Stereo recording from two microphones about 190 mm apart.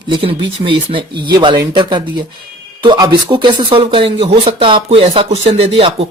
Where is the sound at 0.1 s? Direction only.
30° right (ahead or behind).